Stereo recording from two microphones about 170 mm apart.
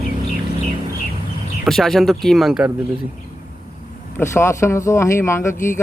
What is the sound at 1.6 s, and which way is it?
Speech, centre (ahead or behind).